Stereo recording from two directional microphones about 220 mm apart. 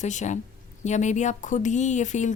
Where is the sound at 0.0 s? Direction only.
35° left (ahead or behind).